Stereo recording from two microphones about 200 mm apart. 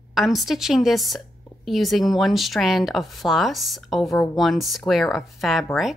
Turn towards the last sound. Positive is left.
turn(degrees=0)  # may be behind; listen again after turning